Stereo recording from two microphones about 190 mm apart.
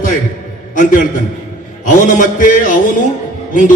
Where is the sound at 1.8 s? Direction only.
45° left (ahead or behind).